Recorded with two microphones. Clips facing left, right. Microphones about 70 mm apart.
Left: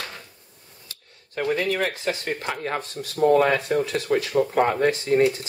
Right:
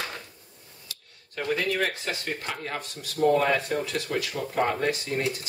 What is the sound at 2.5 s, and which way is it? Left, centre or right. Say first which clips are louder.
Speech: left 6 dB; left.